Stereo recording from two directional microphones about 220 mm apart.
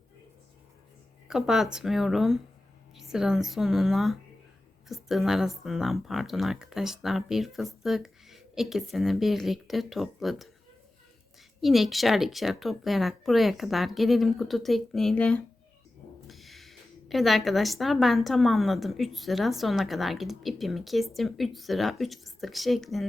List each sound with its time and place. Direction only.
1.3 s a woman's voice: centre (ahead or behind)
11.6 s a woman's voice: centre (ahead or behind)